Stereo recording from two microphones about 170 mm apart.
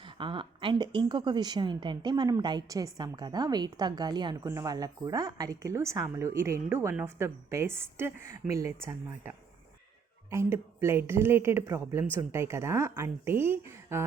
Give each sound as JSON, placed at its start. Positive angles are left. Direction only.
{"t": 0.0, "sound": "speech", "side_deg": -30}